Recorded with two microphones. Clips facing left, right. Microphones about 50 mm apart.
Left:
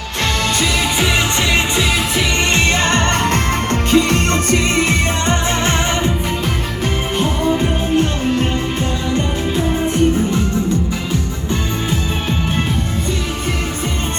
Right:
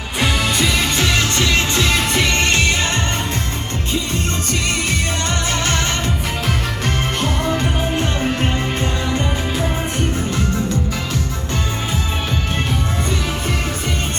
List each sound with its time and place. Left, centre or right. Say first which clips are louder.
0.2 s music: even; centre
1.0 s music: left 1 dB; centre
2.5 s music: left 3 dB; left
3.9 s music: left 9 dB; left
4.4 s music: left 6 dB; left
7.2 s music: left 6 dB; centre
8.2 s music: left 2 dB; centre